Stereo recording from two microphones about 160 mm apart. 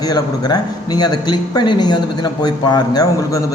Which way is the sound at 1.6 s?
25° left (ahead or behind).